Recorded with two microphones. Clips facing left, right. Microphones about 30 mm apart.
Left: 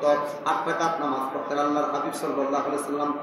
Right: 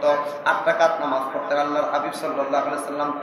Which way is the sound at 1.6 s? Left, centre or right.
Right.